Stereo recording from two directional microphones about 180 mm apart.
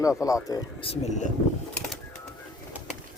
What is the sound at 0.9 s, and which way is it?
Speech, 40° left (ahead or behind).